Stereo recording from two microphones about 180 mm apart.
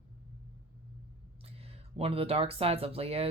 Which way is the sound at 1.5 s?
35° right (ahead or behind).